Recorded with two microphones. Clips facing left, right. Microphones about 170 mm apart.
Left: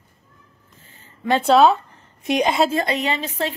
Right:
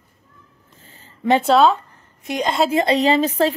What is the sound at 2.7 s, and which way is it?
Speech, 30° right (ahead or behind).